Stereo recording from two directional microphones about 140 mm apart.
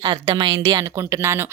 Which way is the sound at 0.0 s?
30° right (ahead or behind).